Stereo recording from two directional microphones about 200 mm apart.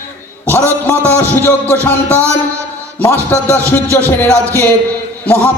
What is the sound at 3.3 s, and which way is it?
A man's voice, 10° left (ahead or behind).